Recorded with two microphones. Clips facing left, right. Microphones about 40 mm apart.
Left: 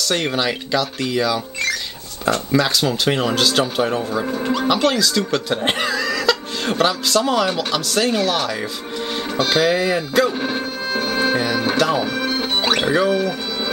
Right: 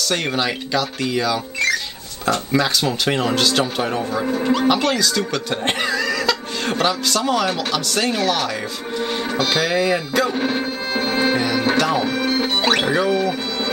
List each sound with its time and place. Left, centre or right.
0.0 s a man's voice: centre
10.9 s music: centre
12.7 s speech: centre